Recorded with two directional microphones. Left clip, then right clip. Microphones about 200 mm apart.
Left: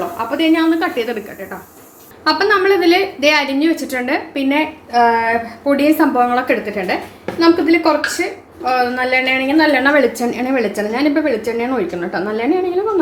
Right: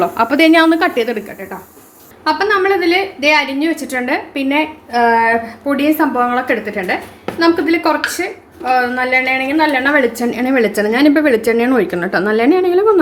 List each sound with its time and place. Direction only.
0.2 s speech: 55° right (ahead or behind)
0.9 s a woman's voice: 25° right (ahead or behind)
2.2 s a woman's voice: centre (ahead or behind); by 12.8 s 30° right (ahead or behind)